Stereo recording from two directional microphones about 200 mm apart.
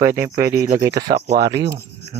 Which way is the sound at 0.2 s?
15° right (ahead or behind).